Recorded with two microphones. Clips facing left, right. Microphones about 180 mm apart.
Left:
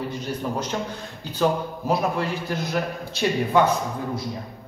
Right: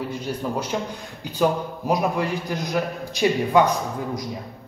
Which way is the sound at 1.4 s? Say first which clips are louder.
Right 1 dB; 15° right (ahead or behind).